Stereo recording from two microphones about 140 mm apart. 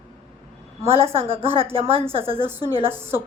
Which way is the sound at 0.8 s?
45° right (ahead or behind).